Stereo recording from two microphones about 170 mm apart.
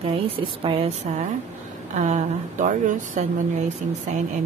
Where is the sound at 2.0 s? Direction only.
45° right (ahead or behind).